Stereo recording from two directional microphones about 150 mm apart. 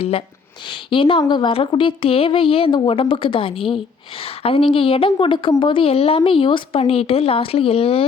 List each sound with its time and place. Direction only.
0.7 s speech: 35° left (ahead or behind)